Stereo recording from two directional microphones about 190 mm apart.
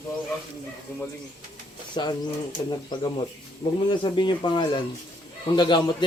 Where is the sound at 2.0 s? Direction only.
25° left (ahead or behind).